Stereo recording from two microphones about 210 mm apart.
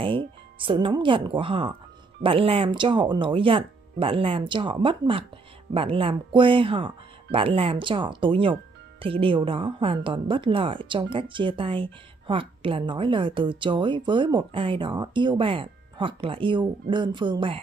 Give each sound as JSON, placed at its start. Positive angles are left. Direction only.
{"t": 0.0, "sound": "a woman's voice", "side_deg": -25}